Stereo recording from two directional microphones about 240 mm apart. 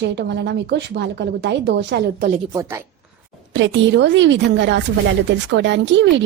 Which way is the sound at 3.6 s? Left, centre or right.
Right.